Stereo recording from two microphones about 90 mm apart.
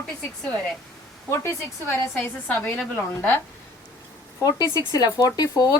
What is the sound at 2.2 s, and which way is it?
A woman's voice, 20° left (ahead or behind).